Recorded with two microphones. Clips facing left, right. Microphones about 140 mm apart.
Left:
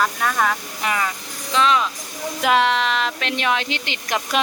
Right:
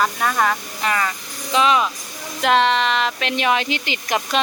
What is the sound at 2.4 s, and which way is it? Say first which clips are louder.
Speech: right 1 dB; 5° left (ahead or behind).